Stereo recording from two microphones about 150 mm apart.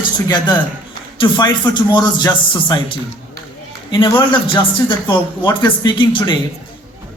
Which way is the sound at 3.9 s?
30° left (ahead or behind).